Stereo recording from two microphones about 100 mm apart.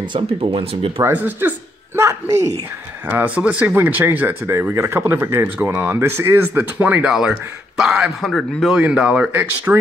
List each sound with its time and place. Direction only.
0.4 s speech: 70° right (ahead or behind)
1.0 s speech: 20° right (ahead or behind)
2.0 s speech: 30° right (ahead or behind)
3.1 s speech: 15° right (ahead or behind); by 8.7 s 5° left (ahead or behind)
8.7 s speech: 10° right (ahead or behind)